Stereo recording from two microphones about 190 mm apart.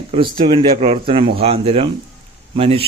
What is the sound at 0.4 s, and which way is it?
Speech, 30° right (ahead or behind).